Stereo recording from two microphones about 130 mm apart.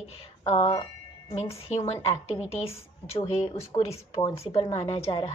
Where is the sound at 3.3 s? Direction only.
50° left (ahead or behind).